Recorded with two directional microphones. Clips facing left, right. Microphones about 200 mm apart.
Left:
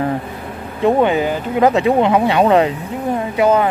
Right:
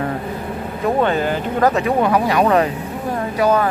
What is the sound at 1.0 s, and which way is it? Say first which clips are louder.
Speech: left 2 dB; 10° left (ahead or behind).